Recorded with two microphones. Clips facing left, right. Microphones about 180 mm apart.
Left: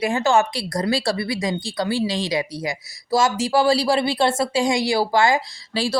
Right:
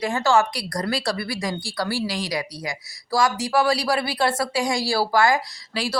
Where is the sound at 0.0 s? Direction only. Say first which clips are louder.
Left 1 dB; 20° left (ahead or behind).